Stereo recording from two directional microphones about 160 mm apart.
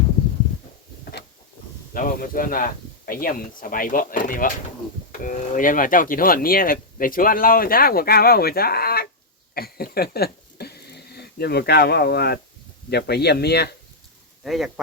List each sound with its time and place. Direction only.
1.9 s speech: 60° left (ahead or behind)
9.6 s a sound: 70° left (ahead or behind)
12.9 s speech: 90° left
14.4 s speech: centre (ahead or behind)